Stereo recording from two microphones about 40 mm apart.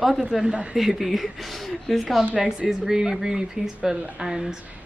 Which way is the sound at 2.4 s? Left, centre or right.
Centre.